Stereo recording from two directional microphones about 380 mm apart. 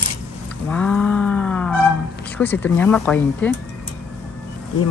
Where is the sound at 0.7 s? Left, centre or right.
Centre.